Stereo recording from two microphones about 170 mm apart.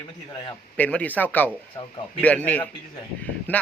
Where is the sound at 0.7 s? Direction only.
10° left (ahead or behind).